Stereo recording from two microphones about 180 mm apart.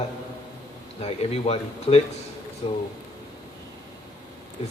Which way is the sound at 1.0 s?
35° left (ahead or behind).